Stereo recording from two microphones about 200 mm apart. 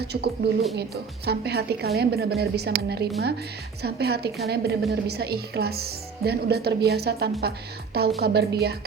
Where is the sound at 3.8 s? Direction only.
55° right (ahead or behind).